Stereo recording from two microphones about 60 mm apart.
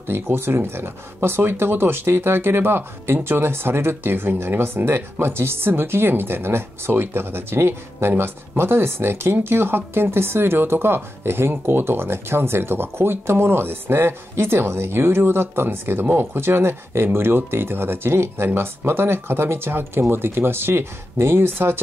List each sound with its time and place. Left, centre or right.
0.1 s speech: right